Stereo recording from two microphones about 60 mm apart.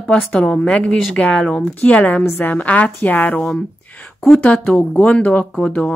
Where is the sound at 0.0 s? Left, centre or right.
Left.